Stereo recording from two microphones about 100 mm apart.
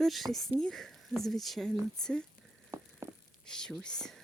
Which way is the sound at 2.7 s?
30° right (ahead or behind).